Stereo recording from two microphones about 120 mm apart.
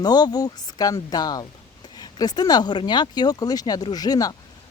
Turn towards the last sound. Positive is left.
turn(degrees=35)  # may be behind; listen again after turning